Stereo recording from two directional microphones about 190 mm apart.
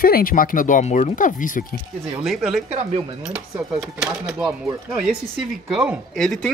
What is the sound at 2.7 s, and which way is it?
Speech, 35° right (ahead or behind).